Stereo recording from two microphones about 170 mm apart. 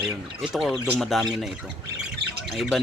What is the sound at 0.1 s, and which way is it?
Speech, 5° right (ahead or behind).